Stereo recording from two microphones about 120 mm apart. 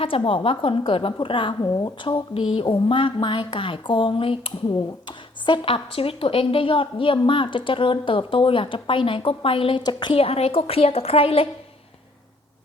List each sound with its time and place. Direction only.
0.0 s a woman's voice: 50° left (ahead or behind)